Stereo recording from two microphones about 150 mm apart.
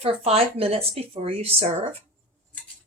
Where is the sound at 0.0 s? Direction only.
40° right (ahead or behind).